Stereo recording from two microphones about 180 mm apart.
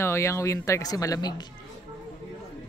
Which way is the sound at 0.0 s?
15° left (ahead or behind).